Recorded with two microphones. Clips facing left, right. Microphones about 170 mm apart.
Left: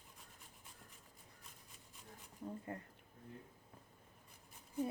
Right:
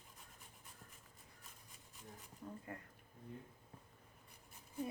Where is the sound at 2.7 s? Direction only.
25° left (ahead or behind).